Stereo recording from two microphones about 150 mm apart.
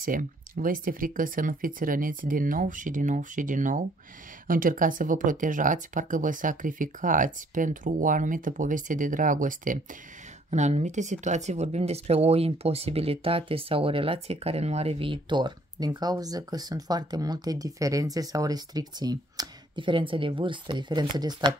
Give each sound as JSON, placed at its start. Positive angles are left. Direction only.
{"t": 0.0, "sound": "speech", "side_deg": -65}
{"t": 10.5, "sound": "speech", "side_deg": -50}